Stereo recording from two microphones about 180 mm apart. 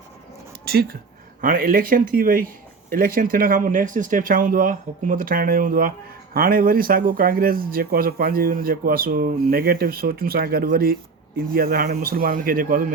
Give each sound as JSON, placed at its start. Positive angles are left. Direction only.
{"t": 0.6, "sound": "speech", "side_deg": -60}